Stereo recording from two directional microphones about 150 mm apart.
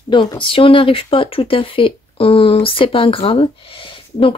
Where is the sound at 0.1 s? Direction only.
35° left (ahead or behind).